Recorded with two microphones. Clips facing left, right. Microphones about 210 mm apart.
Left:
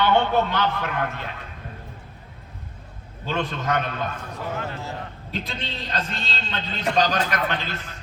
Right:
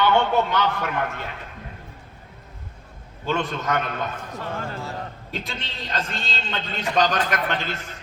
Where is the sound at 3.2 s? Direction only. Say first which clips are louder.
Right 1 dB; 50° right (ahead or behind).